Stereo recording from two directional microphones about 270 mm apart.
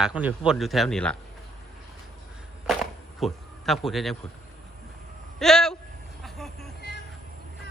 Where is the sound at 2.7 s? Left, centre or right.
Centre.